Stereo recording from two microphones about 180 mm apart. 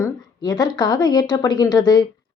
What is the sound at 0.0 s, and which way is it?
Speech, 20° left (ahead or behind).